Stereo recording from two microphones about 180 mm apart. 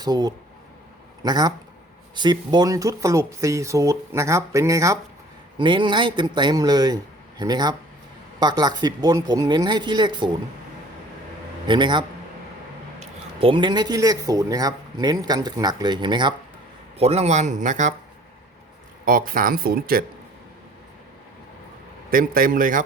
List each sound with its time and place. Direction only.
0.0 s speech: 20° right (ahead or behind)
11.6 s speech: 25° right (ahead or behind)
17.0 s a man's voice: 35° right (ahead or behind)
19.0 s speech: 50° right (ahead or behind)
22.1 s speech: 50° right (ahead or behind)